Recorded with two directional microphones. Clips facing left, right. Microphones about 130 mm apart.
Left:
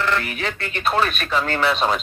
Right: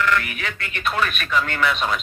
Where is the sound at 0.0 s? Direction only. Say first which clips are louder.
Even; 30° left (ahead or behind).